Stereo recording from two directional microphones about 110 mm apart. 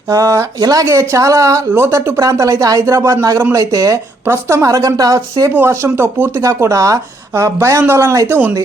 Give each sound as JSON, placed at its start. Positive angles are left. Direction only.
{"t": 0.1, "sound": "speech", "side_deg": -30}